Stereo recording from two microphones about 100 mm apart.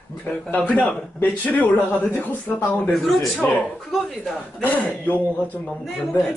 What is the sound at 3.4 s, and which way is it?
Speech, 15° left (ahead or behind).